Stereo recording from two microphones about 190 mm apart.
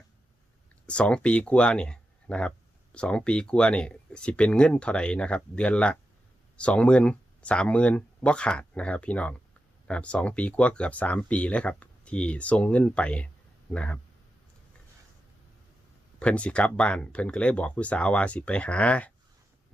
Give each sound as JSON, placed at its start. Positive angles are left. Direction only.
{"t": 0.9, "sound": "speech", "side_deg": 5}
{"t": 16.2, "sound": "speech", "side_deg": 5}